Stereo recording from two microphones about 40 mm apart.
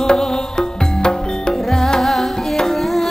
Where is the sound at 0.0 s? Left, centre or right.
Centre.